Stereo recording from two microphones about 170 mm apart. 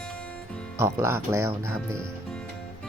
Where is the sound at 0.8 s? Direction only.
15° right (ahead or behind).